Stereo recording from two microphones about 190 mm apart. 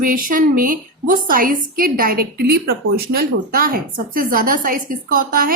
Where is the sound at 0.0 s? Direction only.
45° right (ahead or behind).